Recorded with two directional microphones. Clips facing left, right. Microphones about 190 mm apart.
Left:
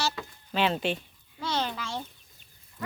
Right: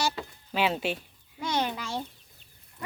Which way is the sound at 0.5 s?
5° right (ahead or behind).